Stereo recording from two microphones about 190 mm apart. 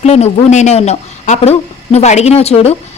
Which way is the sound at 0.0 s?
35° left (ahead or behind).